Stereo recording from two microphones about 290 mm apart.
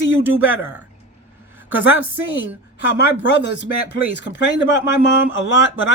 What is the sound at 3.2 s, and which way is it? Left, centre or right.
Speech, left.